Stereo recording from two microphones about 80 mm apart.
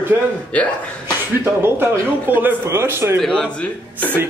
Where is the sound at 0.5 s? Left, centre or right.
Centre.